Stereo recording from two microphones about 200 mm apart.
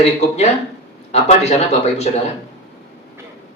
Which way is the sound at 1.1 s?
30° left (ahead or behind).